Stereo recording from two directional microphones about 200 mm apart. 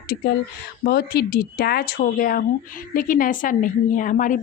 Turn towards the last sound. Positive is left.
turn(degrees=40)  # may be behind; listen again after turning